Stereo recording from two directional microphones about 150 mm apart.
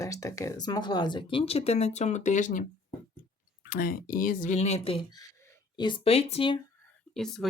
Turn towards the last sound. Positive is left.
turn(degrees=0)  # may be behind; listen again after turning